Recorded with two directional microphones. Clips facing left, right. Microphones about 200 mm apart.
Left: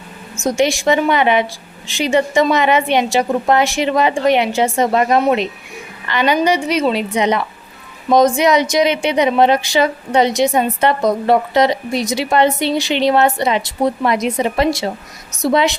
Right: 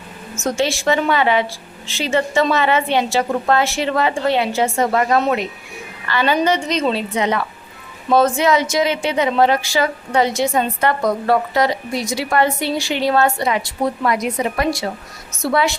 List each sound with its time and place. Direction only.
0.4 s a woman's voice: 15° left (ahead or behind)